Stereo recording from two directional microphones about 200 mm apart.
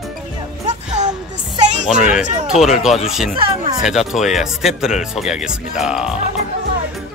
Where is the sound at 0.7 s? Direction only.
35° right (ahead or behind).